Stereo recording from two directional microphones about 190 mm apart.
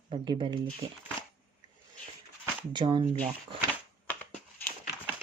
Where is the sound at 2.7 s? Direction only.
25° right (ahead or behind).